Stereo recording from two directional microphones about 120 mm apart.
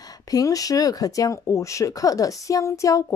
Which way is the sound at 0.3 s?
30° left (ahead or behind).